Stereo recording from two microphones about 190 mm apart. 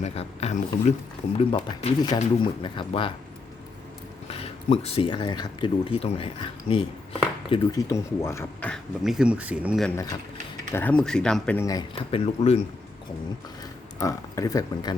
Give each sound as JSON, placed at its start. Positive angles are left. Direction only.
{"t": 0.0, "sound": "speech", "side_deg": 35}
{"t": 4.3, "sound": "speech", "side_deg": 30}
{"t": 8.7, "sound": "speech", "side_deg": 0}
{"t": 10.7, "sound": "speech", "side_deg": 10}
{"t": 14.0, "sound": "speech", "side_deg": 15}